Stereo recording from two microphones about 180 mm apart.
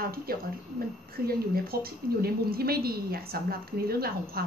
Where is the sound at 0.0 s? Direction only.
55° right (ahead or behind).